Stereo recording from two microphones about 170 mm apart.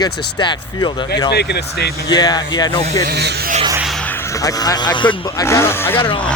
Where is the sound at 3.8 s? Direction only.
Centre (ahead or behind).